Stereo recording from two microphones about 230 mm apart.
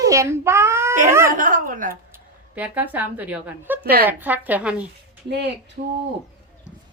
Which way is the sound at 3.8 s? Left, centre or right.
Right.